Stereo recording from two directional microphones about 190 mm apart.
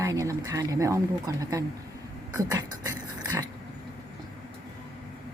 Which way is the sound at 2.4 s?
20° right (ahead or behind).